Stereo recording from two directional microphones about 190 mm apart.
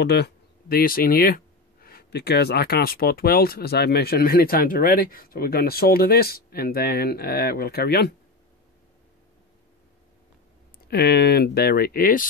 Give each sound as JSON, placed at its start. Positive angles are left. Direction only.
{"t": 0.0, "sound": "speech", "side_deg": 60}
{"t": 10.9, "sound": "speech", "side_deg": 60}